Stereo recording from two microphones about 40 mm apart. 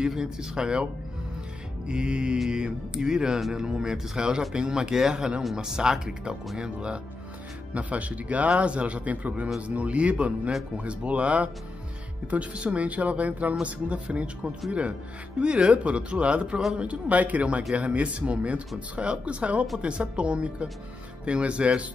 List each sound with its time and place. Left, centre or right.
0.0 s speech: centre
1.9 s speech: right
7.7 s speech: right